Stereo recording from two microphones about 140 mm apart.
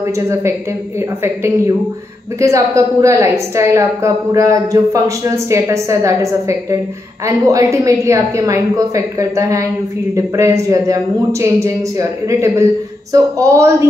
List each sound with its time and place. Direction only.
0.0 s a woman's voice: 20° right (ahead or behind)